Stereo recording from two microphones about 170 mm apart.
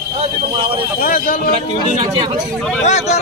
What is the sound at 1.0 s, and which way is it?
Speech, 55° left (ahead or behind).